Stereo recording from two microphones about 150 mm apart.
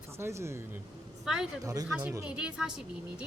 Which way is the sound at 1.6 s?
25° right (ahead or behind).